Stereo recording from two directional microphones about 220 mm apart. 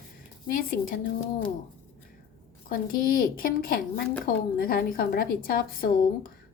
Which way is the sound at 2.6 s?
40° left (ahead or behind).